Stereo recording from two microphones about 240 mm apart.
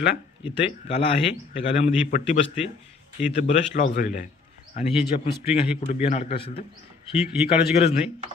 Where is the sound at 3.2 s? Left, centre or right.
Left.